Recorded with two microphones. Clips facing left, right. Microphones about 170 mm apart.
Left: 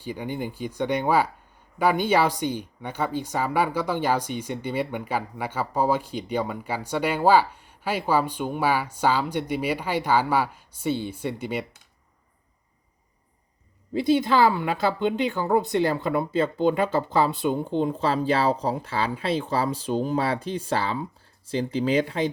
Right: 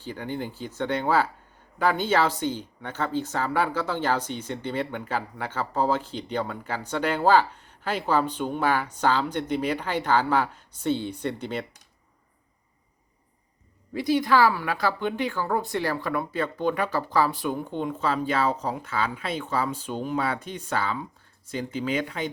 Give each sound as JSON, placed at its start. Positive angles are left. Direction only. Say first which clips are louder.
{"t": 0.0, "sound": "speech", "louder": "left 2 dB", "side_deg": 15}
{"t": 13.9, "sound": "speech", "louder": "left 1 dB", "side_deg": 25}